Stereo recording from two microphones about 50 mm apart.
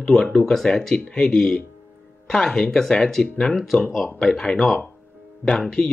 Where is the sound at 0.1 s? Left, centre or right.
Centre.